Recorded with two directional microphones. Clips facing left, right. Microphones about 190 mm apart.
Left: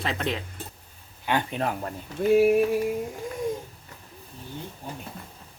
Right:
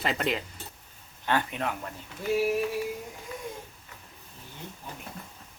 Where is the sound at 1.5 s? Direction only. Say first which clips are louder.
Left 4 dB; 35° left (ahead or behind).